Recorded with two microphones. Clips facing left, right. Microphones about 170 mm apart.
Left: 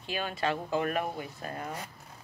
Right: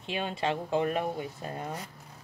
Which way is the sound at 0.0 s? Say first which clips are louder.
Right 1 dB; 25° right (ahead or behind).